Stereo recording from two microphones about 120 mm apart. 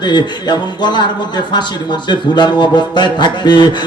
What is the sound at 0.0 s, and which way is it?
A man's voice, 40° left (ahead or behind).